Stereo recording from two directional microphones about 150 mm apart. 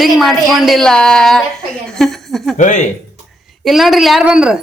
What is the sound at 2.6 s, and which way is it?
Speech, 55° left (ahead or behind).